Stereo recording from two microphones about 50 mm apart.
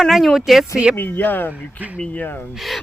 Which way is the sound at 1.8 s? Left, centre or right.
Right.